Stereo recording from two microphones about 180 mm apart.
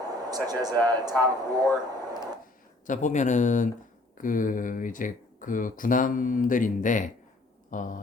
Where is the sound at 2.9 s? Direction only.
45° left (ahead or behind).